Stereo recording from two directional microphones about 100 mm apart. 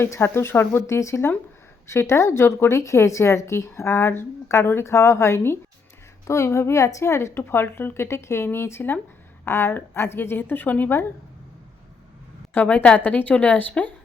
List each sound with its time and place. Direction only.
0.0 s speech: 25° left (ahead or behind)
12.5 s a woman's voice: 15° left (ahead or behind)